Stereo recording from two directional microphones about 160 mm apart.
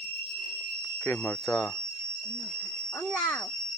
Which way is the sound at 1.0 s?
15° left (ahead or behind).